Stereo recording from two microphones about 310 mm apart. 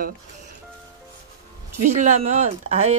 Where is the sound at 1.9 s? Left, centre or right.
Right.